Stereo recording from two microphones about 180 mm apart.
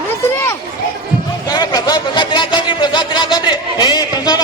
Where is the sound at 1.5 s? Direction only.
20° left (ahead or behind).